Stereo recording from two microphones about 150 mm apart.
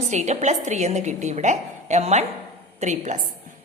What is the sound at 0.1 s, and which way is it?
A woman's voice, 50° right (ahead or behind).